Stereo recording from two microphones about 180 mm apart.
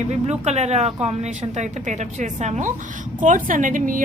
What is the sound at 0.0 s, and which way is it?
A woman's voice, 40° right (ahead or behind).